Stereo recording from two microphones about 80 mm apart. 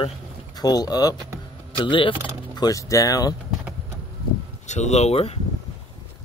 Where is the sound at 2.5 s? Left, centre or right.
Left.